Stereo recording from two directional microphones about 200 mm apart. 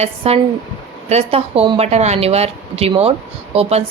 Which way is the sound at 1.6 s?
25° right (ahead or behind).